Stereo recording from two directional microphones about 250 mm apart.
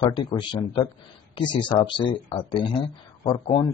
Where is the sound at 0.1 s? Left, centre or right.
Centre.